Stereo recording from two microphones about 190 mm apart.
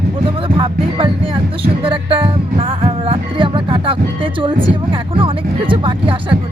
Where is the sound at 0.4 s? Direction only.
25° right (ahead or behind).